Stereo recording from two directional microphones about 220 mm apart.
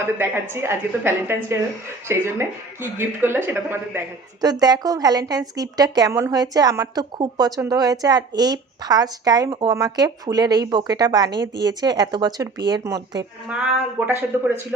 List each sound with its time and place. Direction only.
0.2 s speech: 10° right (ahead or behind)